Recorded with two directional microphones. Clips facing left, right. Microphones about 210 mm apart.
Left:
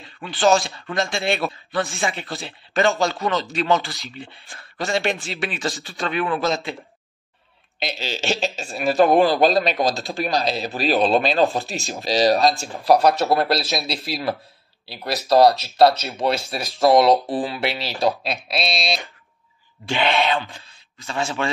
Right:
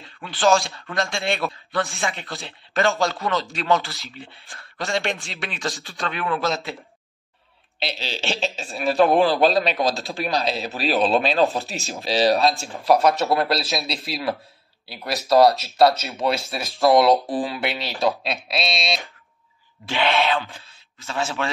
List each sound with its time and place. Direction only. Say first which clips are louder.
0.0 s speech: left 2 dB; centre (ahead or behind)
7.8 s speech: left 2 dB; 45° left (ahead or behind)
8.3 s speech: left 2 dB; centre (ahead or behind)
15.9 s speech: left 1 dB; centre (ahead or behind)